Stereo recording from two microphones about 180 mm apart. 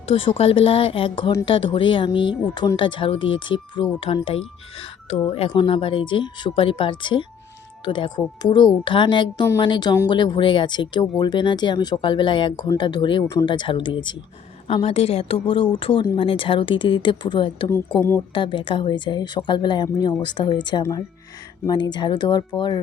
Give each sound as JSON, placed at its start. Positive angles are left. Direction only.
{"t": 0.0, "sound": "speech", "side_deg": 30}
{"t": 17.9, "sound": "speech", "side_deg": 15}
{"t": 18.3, "sound": "speech", "side_deg": 25}